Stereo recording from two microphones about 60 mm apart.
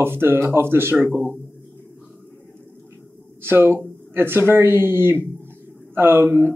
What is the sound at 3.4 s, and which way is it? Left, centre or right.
Speech, right.